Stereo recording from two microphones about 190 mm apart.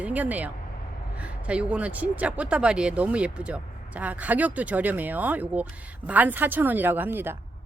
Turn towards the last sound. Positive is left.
turn(degrees=-10)  # may be behind; listen again after turning